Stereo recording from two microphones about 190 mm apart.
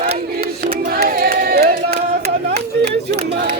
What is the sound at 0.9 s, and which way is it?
Crowd, 50° right (ahead or behind).